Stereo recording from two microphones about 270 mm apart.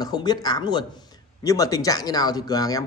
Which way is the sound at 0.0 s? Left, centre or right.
Centre.